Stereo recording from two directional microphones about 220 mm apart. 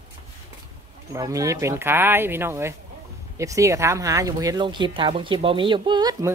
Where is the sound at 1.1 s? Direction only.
15° right (ahead or behind).